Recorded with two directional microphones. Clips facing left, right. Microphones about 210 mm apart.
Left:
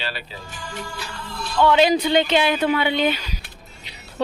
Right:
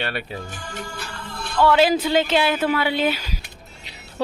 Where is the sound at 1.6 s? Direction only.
5° right (ahead or behind).